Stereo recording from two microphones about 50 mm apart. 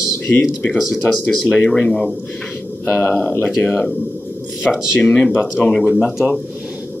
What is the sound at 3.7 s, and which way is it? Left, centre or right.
Speech, centre.